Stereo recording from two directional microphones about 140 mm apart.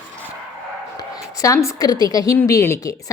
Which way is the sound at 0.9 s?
25° left (ahead or behind).